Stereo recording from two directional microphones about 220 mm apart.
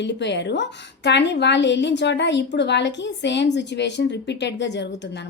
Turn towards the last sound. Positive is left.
turn(degrees=50)  # may be behind; listen again after turning